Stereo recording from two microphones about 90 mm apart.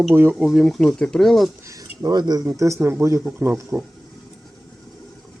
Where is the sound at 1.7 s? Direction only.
45° right (ahead or behind).